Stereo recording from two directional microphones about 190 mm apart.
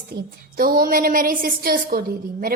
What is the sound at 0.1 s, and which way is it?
A woman's voice, 50° right (ahead or behind).